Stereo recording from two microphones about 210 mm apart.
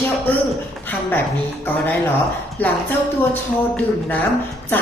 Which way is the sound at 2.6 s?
10° left (ahead or behind).